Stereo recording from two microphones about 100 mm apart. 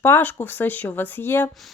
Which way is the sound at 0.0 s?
20° left (ahead or behind).